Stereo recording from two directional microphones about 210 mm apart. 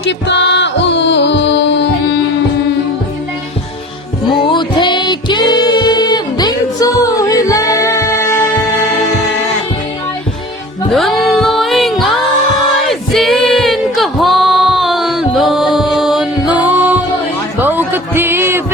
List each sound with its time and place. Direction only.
0.0 s music: 60° left (ahead or behind)
4.5 s music: 20° left (ahead or behind)
10.9 s music: centre (ahead or behind)
17.6 s a sound: 10° right (ahead or behind)